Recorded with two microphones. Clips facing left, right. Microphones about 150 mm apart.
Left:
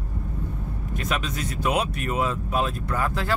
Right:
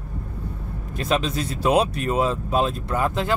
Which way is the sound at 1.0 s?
30° right (ahead or behind).